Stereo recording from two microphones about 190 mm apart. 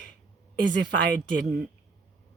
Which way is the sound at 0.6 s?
65° right (ahead or behind).